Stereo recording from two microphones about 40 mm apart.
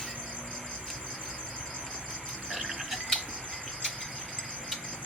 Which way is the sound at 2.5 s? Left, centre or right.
Centre.